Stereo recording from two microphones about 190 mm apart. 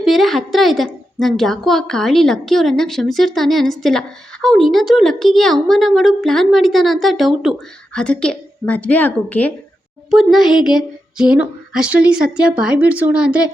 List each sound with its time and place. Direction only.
0.0 s a woman's voice: centre (ahead or behind)